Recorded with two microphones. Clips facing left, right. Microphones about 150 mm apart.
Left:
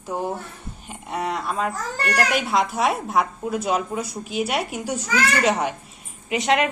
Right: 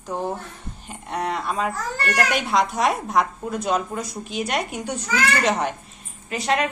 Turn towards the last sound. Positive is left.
turn(degrees=20)  # may be behind; listen again after turning